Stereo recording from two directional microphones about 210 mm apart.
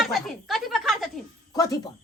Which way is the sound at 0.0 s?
Centre (ahead or behind).